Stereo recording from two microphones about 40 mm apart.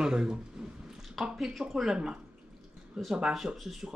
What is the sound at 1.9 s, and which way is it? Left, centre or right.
A man's voice, centre.